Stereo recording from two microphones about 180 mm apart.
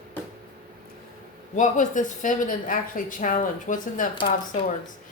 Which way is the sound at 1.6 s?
45° left (ahead or behind).